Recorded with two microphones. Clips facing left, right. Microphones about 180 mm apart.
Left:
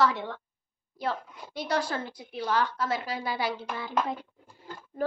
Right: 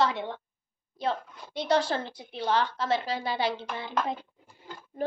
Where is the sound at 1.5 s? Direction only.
25° right (ahead or behind).